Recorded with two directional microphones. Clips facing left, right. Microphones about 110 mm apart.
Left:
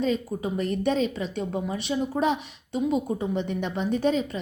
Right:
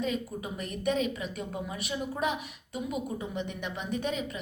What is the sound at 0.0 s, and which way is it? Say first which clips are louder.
A woman's voice: left 6 dB; 30° left (ahead or behind).